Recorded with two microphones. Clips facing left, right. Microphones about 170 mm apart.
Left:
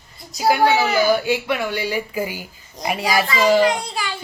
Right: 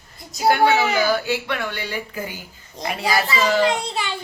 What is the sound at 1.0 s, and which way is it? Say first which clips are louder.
A woman's voice: left 3 dB; 15° left (ahead or behind).